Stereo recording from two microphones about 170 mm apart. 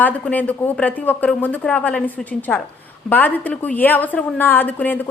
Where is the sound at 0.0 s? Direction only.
10° left (ahead or behind).